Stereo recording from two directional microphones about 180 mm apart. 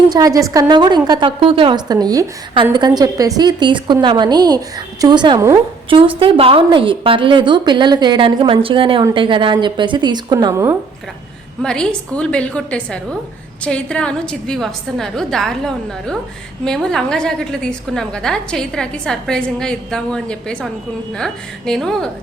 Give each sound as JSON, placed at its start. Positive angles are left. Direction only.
{"t": 0.1, "sound": "a woman's voice", "side_deg": -20}
{"t": 6.1, "sound": "a woman's voice", "side_deg": -30}
{"t": 11.6, "sound": "a woman's voice", "side_deg": 5}
{"t": 21.7, "sound": "a woman's voice", "side_deg": 0}